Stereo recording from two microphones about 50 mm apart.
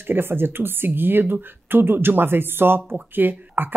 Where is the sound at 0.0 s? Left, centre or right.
Right.